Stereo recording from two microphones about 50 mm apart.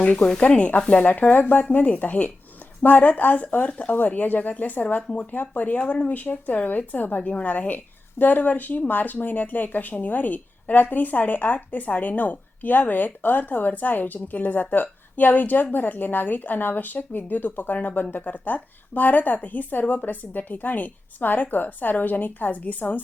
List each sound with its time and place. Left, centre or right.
0.0 s speech: left
1.1 s a woman's voice: left